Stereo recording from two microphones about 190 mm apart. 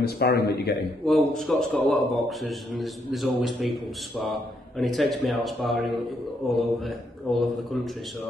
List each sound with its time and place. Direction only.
0.0 s a man's voice: 55° left (ahead or behind)
1.0 s a man's voice: centre (ahead or behind)